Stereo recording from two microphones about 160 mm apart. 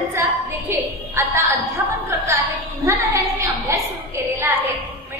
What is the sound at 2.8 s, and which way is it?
Music, 20° right (ahead or behind).